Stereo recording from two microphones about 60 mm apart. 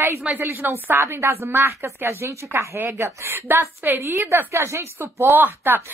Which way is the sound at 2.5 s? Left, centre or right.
Right.